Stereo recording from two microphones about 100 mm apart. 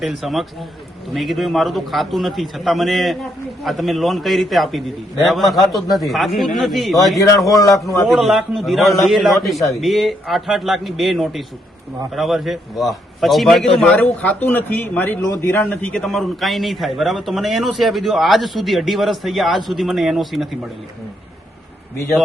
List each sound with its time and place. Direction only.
0.0 s a man's voice: centre (ahead or behind)
7.4 s a man's voice: 35° left (ahead or behind)
8.0 s a man's voice: centre (ahead or behind)
13.8 s a man's voice: 15° left (ahead or behind)
15.7 s a man's voice: 10° left (ahead or behind)